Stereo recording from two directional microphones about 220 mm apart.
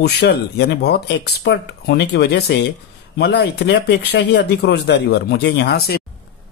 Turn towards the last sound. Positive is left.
turn(degrees=45)  # may be behind; listen again after turning